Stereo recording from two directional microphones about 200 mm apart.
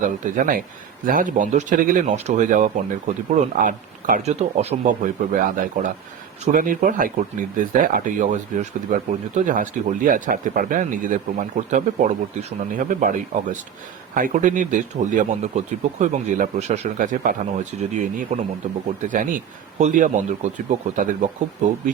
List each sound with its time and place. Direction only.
0.0 s speech: 40° right (ahead or behind)